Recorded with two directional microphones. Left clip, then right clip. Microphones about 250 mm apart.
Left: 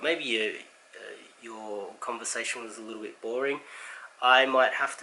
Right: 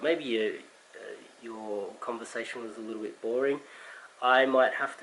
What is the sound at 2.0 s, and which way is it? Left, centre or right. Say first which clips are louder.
Speech: left 3 dB; centre.